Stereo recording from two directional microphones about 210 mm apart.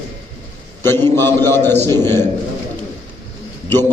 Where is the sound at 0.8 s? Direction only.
10° left (ahead or behind).